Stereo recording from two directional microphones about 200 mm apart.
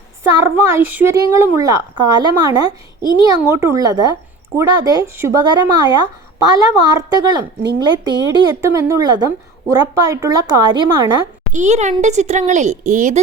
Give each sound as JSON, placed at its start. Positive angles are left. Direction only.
{"t": 0.2, "sound": "a woman's voice", "side_deg": -15}
{"t": 11.5, "sound": "speech", "side_deg": -35}